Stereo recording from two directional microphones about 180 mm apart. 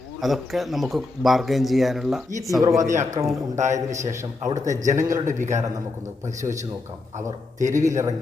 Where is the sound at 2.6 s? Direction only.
15° right (ahead or behind).